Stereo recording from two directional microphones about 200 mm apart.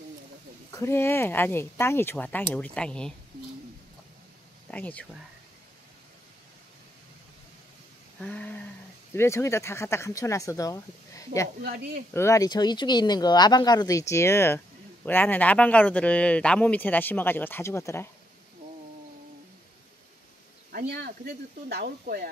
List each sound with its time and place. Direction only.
0.7 s a man's voice: 15° left (ahead or behind)
4.6 s speech: 5° left (ahead or behind)
8.2 s a man's voice: 5° left (ahead or behind)
11.6 s speech: 50° right (ahead or behind)
12.1 s a man's voice: 15° left (ahead or behind)
20.7 s speech: 55° right (ahead or behind)